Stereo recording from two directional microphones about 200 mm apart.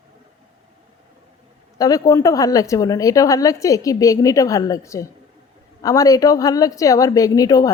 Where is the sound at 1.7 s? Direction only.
15° left (ahead or behind).